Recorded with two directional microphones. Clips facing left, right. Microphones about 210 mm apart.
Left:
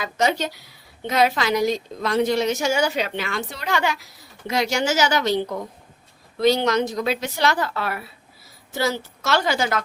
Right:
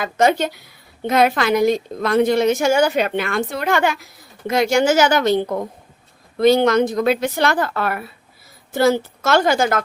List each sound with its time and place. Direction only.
0.0 s a woman's voice: 55° right (ahead or behind)